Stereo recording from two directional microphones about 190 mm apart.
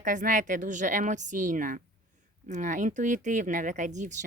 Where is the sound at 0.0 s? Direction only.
40° right (ahead or behind).